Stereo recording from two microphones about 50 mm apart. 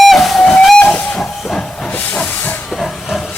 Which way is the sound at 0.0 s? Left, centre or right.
Centre.